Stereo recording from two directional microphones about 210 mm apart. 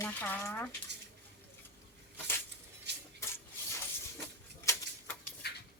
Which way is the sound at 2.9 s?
55° right (ahead or behind).